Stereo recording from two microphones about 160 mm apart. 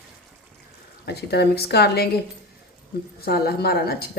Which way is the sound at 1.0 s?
90° left.